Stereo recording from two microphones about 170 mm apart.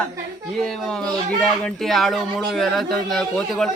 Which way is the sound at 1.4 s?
Centre (ahead or behind).